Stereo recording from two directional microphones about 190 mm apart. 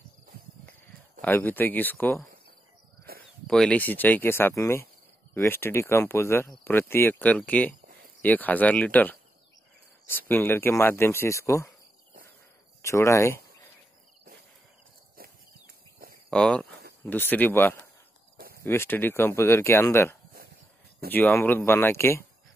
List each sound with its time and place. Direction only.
1.2 s speech: 10° left (ahead or behind)
3.4 s speech: 5° left (ahead or behind)
12.8 s speech: 15° left (ahead or behind)
16.3 s speech: 5° left (ahead or behind)